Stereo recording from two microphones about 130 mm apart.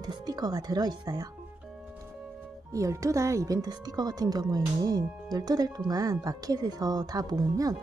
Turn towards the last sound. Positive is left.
turn(degrees=-30)  # may be behind; listen again after turning